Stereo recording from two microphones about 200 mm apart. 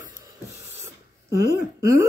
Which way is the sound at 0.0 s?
10° right (ahead or behind).